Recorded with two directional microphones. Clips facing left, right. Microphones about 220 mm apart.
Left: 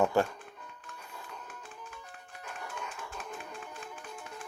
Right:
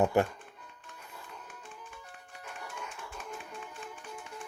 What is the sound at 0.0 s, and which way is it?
Speech, 20° right (ahead or behind).